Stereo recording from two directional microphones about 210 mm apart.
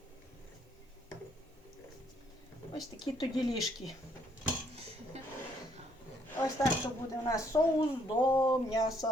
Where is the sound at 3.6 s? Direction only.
Centre (ahead or behind).